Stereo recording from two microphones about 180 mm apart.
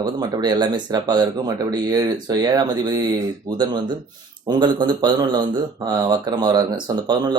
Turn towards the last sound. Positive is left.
turn(degrees=-25)  # may be behind; listen again after turning